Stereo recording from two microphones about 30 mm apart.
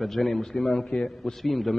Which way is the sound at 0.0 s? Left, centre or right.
Centre.